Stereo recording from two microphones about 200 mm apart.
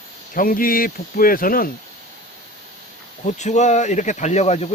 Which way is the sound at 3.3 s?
35° left (ahead or behind).